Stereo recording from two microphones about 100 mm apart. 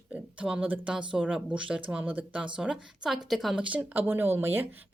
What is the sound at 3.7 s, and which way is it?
A woman's voice, 15° right (ahead or behind).